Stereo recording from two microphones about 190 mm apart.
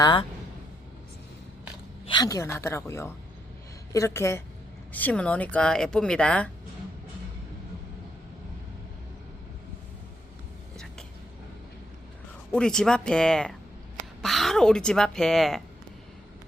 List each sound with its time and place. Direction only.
0.0 s speech: 25° left (ahead or behind)
2.0 s speech: 20° left (ahead or behind)
12.5 s speech: 5° left (ahead or behind)